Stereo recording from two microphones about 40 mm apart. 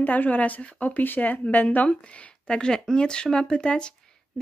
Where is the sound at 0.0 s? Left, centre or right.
Left.